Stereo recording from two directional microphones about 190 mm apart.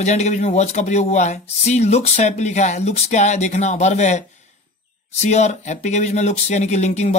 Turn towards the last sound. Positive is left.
turn(degrees=35)  # may be behind; listen again after turning